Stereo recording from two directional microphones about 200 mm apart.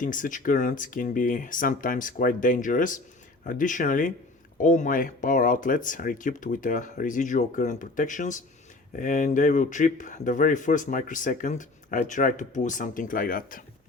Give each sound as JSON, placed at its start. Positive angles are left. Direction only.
{"t": 0.0, "sound": "speech", "side_deg": 40}